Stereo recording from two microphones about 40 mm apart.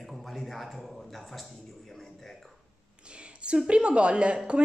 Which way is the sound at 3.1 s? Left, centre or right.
Right.